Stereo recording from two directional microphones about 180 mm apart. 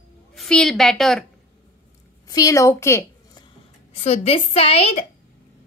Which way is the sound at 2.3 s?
20° left (ahead or behind).